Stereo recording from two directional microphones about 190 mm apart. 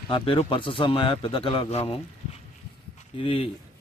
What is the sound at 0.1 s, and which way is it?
Speech, 25° left (ahead or behind).